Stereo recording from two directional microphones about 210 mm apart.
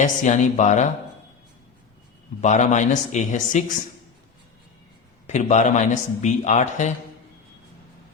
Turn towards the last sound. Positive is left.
turn(degrees=35)  # may be behind; listen again after turning